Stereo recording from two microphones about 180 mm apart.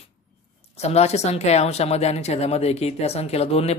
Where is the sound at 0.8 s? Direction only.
35° left (ahead or behind).